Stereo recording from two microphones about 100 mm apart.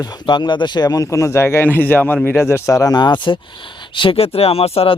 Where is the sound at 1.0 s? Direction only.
30° left (ahead or behind).